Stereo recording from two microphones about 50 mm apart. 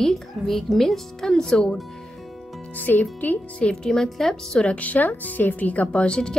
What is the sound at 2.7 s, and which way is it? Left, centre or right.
Speech, left.